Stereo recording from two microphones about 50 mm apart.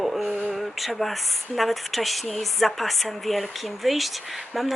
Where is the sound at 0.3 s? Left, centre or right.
Right.